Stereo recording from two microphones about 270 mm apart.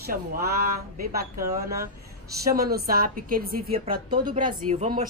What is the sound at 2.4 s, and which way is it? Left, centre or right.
A woman's voice, right.